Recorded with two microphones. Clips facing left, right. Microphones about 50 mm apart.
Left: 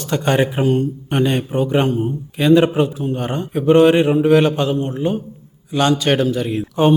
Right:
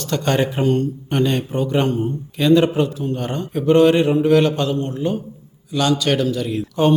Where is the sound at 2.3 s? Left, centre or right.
Left.